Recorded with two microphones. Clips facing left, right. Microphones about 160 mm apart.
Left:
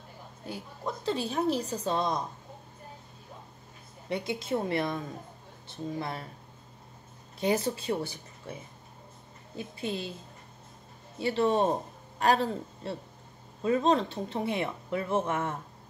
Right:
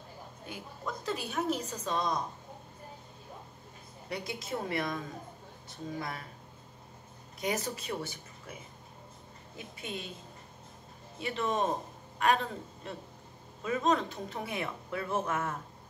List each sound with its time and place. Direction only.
0.5 s a woman's voice: 35° left (ahead or behind)
4.1 s speech: 25° left (ahead or behind)
7.3 s speech: 30° left (ahead or behind)
9.6 s a woman's voice: 30° left (ahead or behind)
11.1 s a woman's voice: 30° left (ahead or behind)